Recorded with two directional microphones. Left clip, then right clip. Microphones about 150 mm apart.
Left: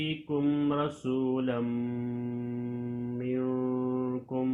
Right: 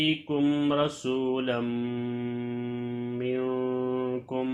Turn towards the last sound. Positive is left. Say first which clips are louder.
# right 3 dB
turn(degrees=-50)  # may be behind; listen again after turning